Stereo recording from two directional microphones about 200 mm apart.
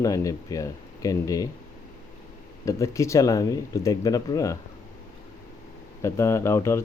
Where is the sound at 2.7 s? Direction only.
15° left (ahead or behind).